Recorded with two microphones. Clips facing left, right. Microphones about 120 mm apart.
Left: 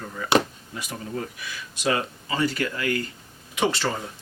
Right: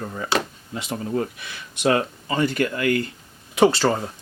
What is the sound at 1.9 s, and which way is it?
Speech, 45° right (ahead or behind).